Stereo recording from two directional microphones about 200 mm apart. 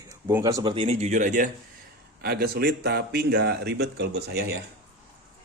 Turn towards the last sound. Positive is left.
turn(degrees=-55)  # may be behind; listen again after turning